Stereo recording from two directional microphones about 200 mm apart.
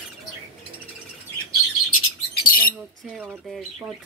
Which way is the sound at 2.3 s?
45° left (ahead or behind).